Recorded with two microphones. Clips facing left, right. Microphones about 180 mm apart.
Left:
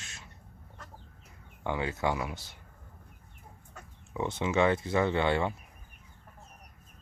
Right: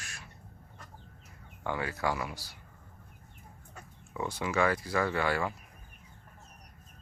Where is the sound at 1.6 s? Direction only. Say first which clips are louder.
Left 2 dB; 20° left (ahead or behind).